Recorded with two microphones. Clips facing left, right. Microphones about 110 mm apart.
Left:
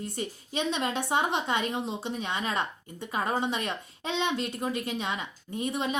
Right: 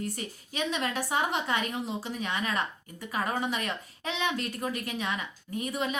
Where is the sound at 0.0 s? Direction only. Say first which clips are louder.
Left 1 dB; 25° left (ahead or behind).